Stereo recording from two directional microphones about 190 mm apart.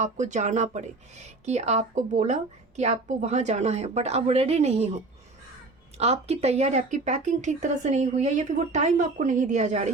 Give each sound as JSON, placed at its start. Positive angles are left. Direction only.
{"t": 0.0, "sound": "a woman's voice", "side_deg": -40}
{"t": 6.0, "sound": "a woman's voice", "side_deg": -35}